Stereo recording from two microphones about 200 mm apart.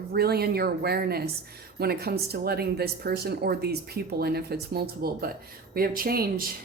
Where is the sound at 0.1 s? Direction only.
50° right (ahead or behind).